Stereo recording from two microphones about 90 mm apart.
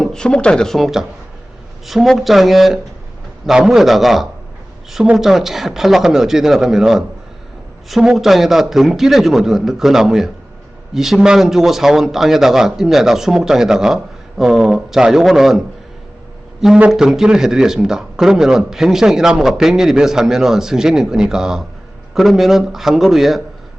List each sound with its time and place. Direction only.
0.0 s speech: 5° left (ahead or behind)